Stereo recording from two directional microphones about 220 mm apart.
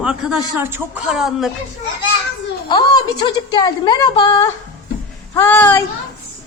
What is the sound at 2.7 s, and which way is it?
A woman's voice, 20° left (ahead or behind).